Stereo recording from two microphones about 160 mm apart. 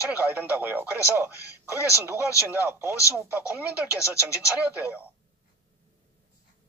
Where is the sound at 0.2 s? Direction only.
10° right (ahead or behind).